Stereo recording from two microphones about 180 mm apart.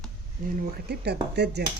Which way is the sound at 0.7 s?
65° right (ahead or behind).